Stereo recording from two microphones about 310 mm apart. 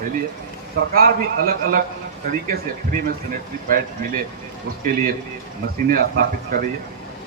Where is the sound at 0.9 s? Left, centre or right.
Right.